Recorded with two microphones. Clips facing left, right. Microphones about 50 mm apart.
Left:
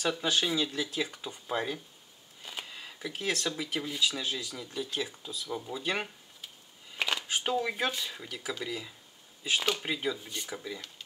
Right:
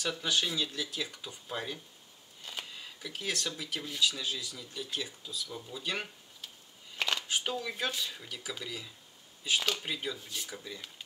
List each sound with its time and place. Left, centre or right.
0.3 s speech: centre
7.0 s a sound: centre
7.9 s speech: centre